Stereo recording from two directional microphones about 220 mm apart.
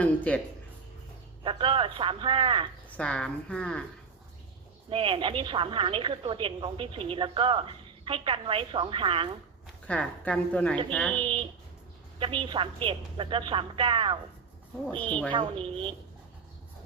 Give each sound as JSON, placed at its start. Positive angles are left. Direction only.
{"t": 0.3, "sound": "a woman's voice", "side_deg": 5}
{"t": 1.5, "sound": "speech", "side_deg": -25}
{"t": 3.0, "sound": "a woman's voice", "side_deg": 5}
{"t": 4.9, "sound": "speech", "side_deg": -25}
{"t": 9.8, "sound": "a woman's voice", "side_deg": 5}
{"t": 12.2, "sound": "speech", "side_deg": -25}
{"t": 15.3, "sound": "speech", "side_deg": -25}